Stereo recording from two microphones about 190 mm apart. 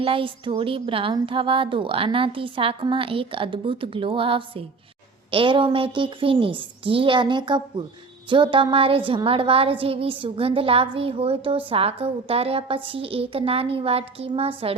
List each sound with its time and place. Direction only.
0.0 s speech: 30° right (ahead or behind)